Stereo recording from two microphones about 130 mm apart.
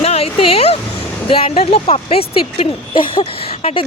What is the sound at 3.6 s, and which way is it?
Speech, 55° left (ahead or behind).